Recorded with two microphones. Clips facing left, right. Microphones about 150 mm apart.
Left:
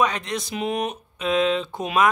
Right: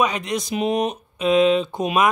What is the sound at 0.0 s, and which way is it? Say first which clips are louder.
Speech: right 2 dB; 10° right (ahead or behind).